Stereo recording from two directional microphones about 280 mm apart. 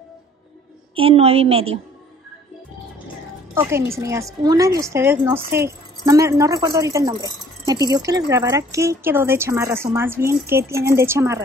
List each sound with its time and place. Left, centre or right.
0.9 s a woman's voice: centre
3.5 s a woman's voice: centre